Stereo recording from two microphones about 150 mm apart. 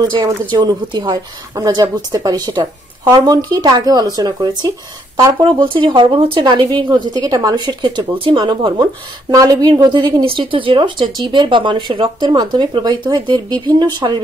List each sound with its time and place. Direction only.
0.1 s a woman's voice: 25° right (ahead or behind)